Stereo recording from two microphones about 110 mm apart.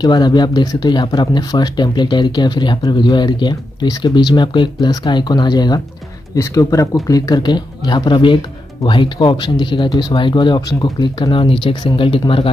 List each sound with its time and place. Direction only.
0.0 s speech: 40° left (ahead or behind)